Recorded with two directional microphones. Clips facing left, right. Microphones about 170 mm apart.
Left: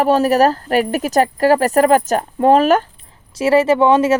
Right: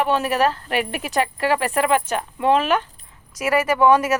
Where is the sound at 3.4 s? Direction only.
30° left (ahead or behind).